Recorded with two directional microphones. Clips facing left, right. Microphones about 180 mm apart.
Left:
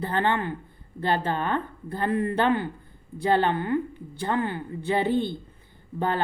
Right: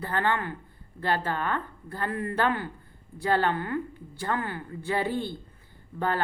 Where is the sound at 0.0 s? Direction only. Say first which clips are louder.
Left 3 dB; 20° left (ahead or behind).